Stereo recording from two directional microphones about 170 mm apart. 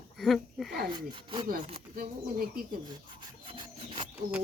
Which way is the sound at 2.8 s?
30° right (ahead or behind).